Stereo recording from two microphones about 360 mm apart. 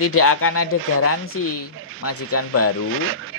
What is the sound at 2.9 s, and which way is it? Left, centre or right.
Speech, right.